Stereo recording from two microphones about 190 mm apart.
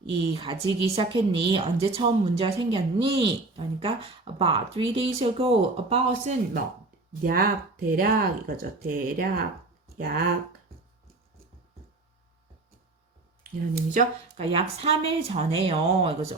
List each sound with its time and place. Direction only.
0.2 s a woman's voice: 25° right (ahead or behind)
7.3 s speech: 50° right (ahead or behind)
13.7 s speech: 45° right (ahead or behind)
14.4 s speech: 30° right (ahead or behind)